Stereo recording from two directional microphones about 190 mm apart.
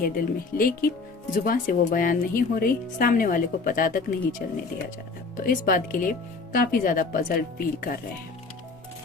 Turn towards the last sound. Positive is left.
turn(degrees=50)  # may be behind; listen again after turning